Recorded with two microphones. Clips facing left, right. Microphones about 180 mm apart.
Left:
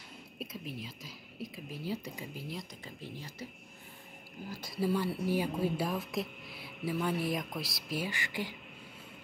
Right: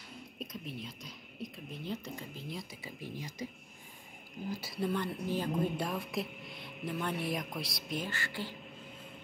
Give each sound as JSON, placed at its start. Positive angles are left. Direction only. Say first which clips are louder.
{"t": 0.4, "sound": "speech", "louder": "left 1 dB", "side_deg": 5}
{"t": 2.8, "sound": "speech", "louder": "right 2 dB", "side_deg": -15}
{"t": 4.5, "sound": "speech", "louder": "right 5 dB", "side_deg": -5}
{"t": 4.7, "sound": "speech", "louder": "left 4 dB", "side_deg": 5}